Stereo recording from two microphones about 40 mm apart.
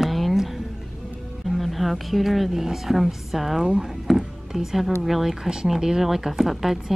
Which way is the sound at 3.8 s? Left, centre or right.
Centre.